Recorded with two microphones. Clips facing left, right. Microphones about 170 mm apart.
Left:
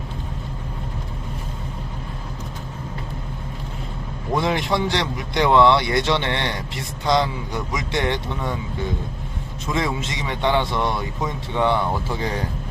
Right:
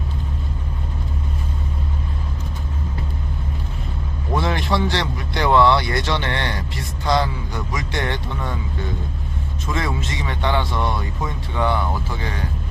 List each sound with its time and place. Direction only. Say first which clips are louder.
4.4 s a man's voice: even; 20° left (ahead or behind)
9.7 s a man's voice: left 1 dB; 20° left (ahead or behind)
12.1 s speech: left 3 dB; 30° left (ahead or behind)